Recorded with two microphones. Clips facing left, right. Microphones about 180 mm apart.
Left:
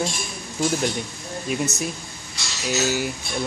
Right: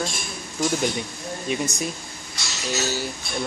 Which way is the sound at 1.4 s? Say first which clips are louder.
Left 1 dB; 5° left (ahead or behind).